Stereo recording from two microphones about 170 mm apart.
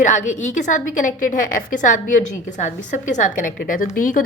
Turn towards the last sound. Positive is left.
turn(degrees=55)  # may be behind; listen again after turning